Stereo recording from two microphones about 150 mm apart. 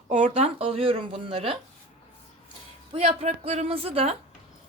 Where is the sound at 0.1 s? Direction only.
50° right (ahead or behind).